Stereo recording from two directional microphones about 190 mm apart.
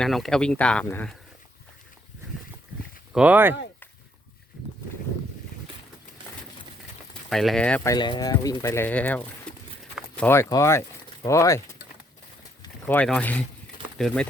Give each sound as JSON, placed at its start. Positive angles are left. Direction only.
{"t": 0.0, "sound": "speech", "side_deg": 0}
{"t": 3.1, "sound": "speech", "side_deg": -5}
{"t": 7.3, "sound": "speech", "side_deg": 0}
{"t": 7.9, "sound": "speech", "side_deg": 25}
{"t": 12.9, "sound": "speech", "side_deg": 5}